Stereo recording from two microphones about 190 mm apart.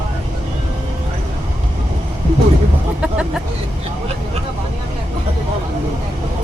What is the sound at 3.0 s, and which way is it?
Speech, 5° right (ahead or behind).